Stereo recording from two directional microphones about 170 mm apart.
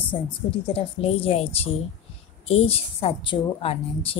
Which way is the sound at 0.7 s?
35° left (ahead or behind).